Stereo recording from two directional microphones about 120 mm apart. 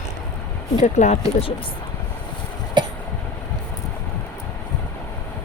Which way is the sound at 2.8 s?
40° right (ahead or behind).